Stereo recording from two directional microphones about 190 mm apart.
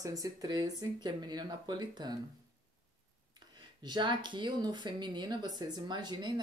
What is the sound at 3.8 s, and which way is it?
Speech, 25° right (ahead or behind).